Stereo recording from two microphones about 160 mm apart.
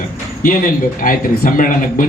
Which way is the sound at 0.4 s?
60° left (ahead or behind).